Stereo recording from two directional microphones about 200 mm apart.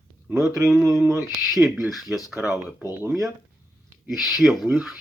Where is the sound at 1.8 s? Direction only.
Centre (ahead or behind).